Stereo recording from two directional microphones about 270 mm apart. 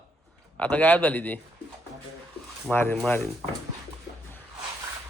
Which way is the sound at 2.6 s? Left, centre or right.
Centre.